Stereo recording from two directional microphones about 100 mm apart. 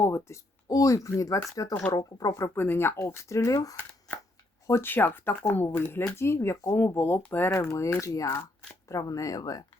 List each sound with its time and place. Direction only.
0.0 s speech: 25° left (ahead or behind)
4.6 s speech: 25° left (ahead or behind)